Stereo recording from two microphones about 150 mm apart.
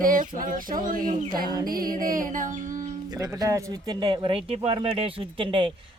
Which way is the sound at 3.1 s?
25° right (ahead or behind).